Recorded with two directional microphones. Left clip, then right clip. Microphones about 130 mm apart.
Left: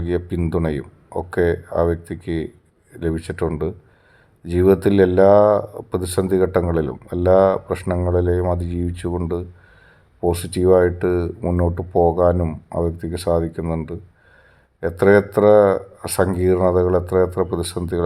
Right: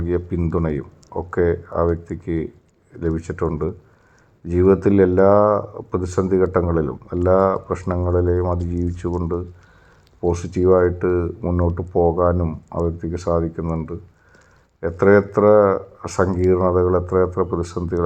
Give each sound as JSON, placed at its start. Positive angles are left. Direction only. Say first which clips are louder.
{"t": 0.0, "sound": "speech", "louder": "even", "side_deg": 35}
{"t": 5.2, "sound": "speech", "louder": "left 4 dB", "side_deg": 30}
{"t": 5.9, "sound": "speech", "louder": "even", "side_deg": 35}